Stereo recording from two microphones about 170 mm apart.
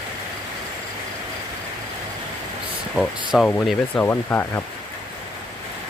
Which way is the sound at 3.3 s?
Centre (ahead or behind).